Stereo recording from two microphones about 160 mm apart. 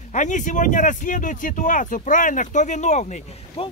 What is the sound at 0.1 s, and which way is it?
Speech, 50° left (ahead or behind).